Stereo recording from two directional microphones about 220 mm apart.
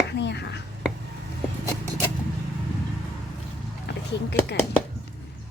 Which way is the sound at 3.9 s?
50° left (ahead or behind).